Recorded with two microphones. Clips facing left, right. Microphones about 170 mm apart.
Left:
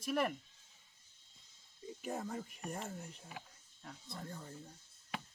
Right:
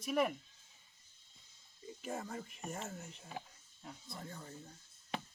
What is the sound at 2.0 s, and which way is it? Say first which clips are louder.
Speech: left 1 dB; centre (ahead or behind).